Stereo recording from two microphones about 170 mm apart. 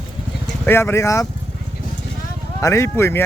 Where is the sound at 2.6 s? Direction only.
15° left (ahead or behind).